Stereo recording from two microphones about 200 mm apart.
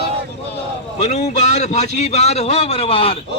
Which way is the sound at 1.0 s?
35° left (ahead or behind).